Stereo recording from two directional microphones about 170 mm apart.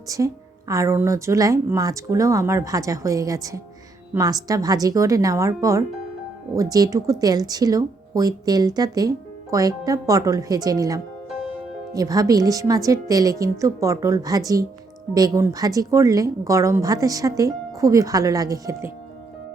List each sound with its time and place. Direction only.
0.1 s speech: 20° right (ahead or behind)